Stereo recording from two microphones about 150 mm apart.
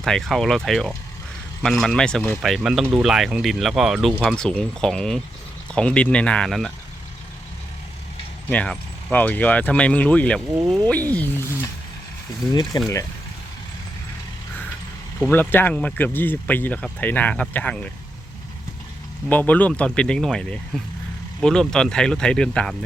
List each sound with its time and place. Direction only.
0.0 s speech: centre (ahead or behind)
8.4 s speech: 5° left (ahead or behind)
12.7 s speech: 30° left (ahead or behind)
15.2 s speech: 15° left (ahead or behind)
19.3 s speech: 10° left (ahead or behind)